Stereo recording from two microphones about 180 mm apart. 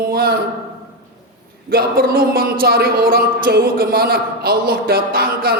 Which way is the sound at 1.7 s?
55° right (ahead or behind).